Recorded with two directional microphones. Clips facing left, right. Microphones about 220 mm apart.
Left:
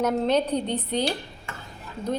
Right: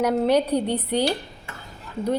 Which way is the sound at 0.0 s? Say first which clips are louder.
Right 3 dB; 10° right (ahead or behind).